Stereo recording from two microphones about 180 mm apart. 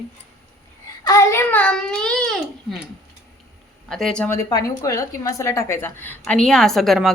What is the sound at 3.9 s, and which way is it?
Child singing, centre (ahead or behind).